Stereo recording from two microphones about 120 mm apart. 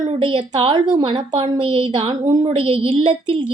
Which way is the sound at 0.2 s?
50° right (ahead or behind).